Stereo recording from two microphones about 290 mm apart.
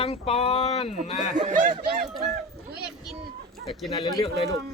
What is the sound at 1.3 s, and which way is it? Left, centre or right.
Speech, right.